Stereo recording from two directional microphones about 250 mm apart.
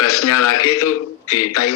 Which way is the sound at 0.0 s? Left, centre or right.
Left.